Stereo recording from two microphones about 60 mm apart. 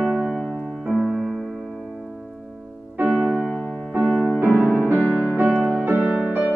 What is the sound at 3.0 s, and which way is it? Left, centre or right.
Music, right.